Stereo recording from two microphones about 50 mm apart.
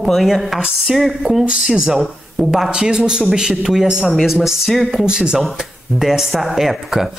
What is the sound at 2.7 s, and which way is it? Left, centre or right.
A woman's voice, centre.